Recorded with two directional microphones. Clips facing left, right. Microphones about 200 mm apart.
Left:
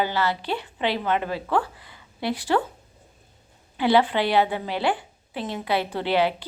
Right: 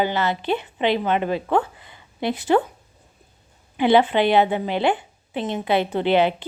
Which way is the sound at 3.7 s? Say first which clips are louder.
Right 3 dB; 20° right (ahead or behind).